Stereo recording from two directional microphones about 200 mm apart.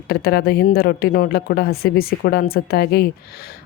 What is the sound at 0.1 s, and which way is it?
A woman's voice, 50° left (ahead or behind).